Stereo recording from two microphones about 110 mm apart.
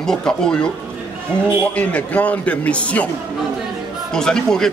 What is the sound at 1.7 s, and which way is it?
A man's voice, 15° left (ahead or behind).